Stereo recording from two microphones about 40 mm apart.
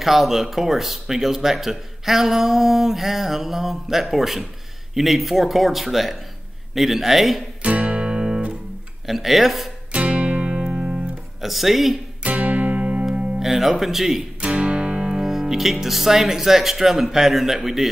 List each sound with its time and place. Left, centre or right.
0.0 s speech: centre
7.6 s music: right
9.0 s speech: centre
9.9 s music: right
11.4 s speech: centre
12.2 s music: right
13.4 s speech: centre
14.4 s music: right
15.2 s speech: centre